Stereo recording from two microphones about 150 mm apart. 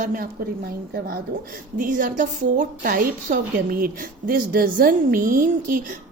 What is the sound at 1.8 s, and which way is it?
A woman's voice, 65° right (ahead or behind).